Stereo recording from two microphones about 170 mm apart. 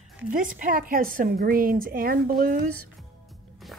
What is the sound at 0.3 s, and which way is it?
A woman's voice, 50° right (ahead or behind).